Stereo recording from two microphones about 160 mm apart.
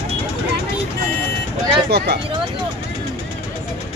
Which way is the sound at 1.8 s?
90° right.